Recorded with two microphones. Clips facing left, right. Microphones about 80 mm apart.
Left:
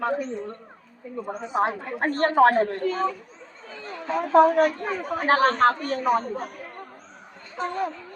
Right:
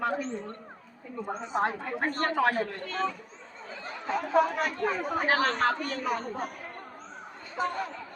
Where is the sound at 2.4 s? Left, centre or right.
Left.